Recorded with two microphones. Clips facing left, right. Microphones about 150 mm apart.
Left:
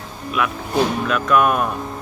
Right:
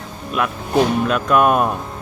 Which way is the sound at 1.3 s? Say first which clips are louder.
Right 2 dB; 40° right (ahead or behind).